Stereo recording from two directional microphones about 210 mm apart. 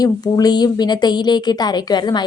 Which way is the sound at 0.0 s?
20° left (ahead or behind).